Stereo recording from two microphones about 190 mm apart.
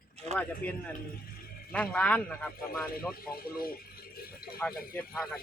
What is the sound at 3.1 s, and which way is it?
Speech, 50° left (ahead or behind).